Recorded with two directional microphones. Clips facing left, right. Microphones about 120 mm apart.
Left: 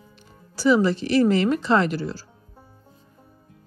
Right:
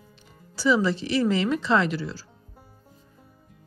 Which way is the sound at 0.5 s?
50° left (ahead or behind).